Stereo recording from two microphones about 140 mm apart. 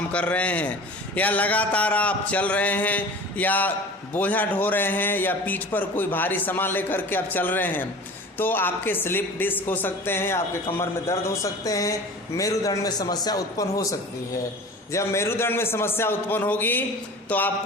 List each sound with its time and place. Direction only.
0.1 s a man's voice: 10° left (ahead or behind); by 13.8 s 25° left (ahead or behind)
14.9 s a man's voice: 20° left (ahead or behind)